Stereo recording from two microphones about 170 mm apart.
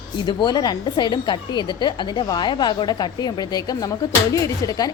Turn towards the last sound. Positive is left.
turn(degrees=20)  # may be behind; listen again after turning